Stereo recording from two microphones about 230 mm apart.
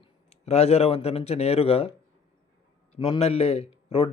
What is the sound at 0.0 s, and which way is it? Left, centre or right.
Speech, left.